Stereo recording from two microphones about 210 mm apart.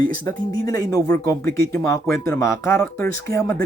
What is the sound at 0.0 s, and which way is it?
Speech, 15° left (ahead or behind).